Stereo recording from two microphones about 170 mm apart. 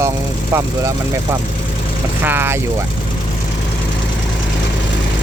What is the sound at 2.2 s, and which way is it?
Speech, 10° right (ahead or behind).